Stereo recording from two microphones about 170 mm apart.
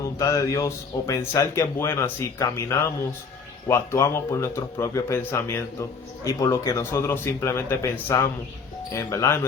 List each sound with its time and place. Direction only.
0.0 s speech: 20° left (ahead or behind)